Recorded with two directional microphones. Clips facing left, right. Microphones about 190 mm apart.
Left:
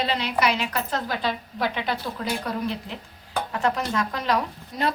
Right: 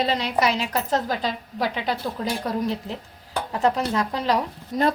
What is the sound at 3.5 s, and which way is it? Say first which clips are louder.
Speech: right 4 dB; 30° right (ahead or behind).